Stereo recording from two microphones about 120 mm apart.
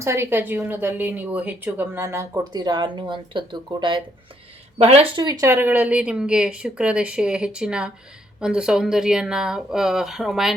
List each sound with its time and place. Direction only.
0.0 s speech: 20° right (ahead or behind)
2.4 s speech: 35° right (ahead or behind)
4.8 s speech: 60° right (ahead or behind)
5.1 s speech: 30° right (ahead or behind)
5.5 s speech: 15° right (ahead or behind)